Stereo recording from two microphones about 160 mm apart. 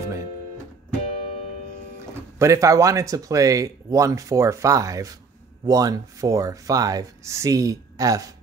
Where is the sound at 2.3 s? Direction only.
20° right (ahead or behind).